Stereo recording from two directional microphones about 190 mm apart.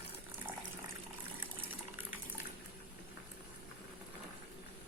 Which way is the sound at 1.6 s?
10° right (ahead or behind).